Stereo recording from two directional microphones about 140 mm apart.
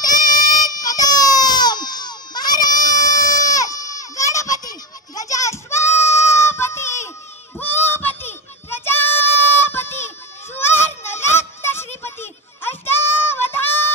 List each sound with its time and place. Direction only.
0.0 s goat: 25° left (ahead or behind)
0.5 s baby cry: 25° left (ahead or behind)
7.5 s child singing: 15° left (ahead or behind)